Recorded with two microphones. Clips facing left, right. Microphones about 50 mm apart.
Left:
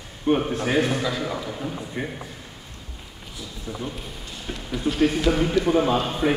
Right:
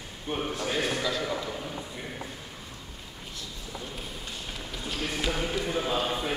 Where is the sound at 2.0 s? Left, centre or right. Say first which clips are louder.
Left 9 dB; left.